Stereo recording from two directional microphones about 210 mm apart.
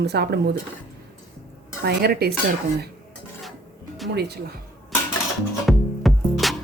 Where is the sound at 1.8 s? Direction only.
50° right (ahead or behind).